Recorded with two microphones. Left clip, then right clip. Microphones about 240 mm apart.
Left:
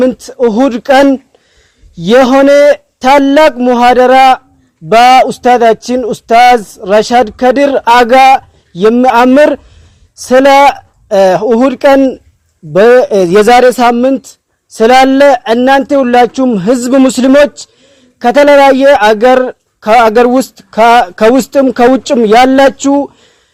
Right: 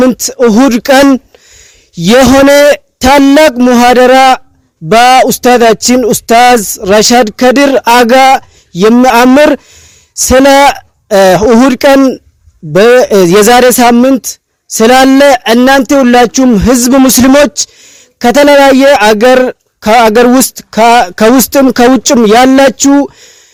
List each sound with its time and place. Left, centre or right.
0.1 s a man's voice: right